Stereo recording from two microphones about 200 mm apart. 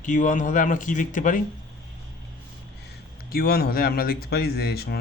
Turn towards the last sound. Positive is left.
turn(degrees=55)  # may be behind; listen again after turning